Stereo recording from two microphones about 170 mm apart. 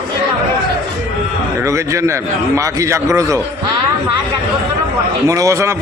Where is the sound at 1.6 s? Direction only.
20° right (ahead or behind).